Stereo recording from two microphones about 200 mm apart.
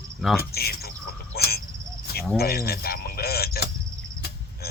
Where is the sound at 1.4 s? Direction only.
50° left (ahead or behind).